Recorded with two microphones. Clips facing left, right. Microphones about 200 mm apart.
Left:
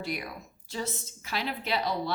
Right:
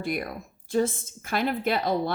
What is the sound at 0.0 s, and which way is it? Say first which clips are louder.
Speech: right 5 dB; 50° right (ahead or behind).